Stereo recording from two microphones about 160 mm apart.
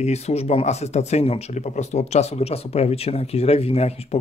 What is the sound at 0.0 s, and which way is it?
Speech, 40° left (ahead or behind).